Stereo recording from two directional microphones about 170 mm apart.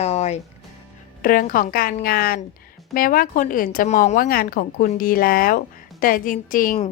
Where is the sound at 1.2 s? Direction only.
55° left (ahead or behind).